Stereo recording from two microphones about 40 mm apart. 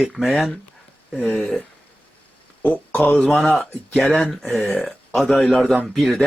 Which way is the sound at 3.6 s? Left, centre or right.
Centre.